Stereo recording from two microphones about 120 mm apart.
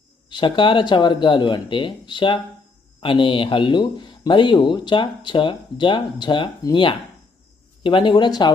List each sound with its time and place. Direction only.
0.3 s speech: 40° left (ahead or behind)